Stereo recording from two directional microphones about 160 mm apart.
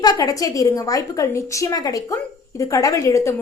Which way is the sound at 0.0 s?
25° left (ahead or behind).